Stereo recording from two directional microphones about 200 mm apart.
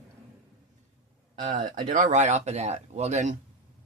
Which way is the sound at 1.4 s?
40° right (ahead or behind).